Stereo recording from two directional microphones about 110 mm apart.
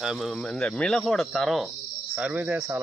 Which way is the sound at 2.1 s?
10° right (ahead or behind).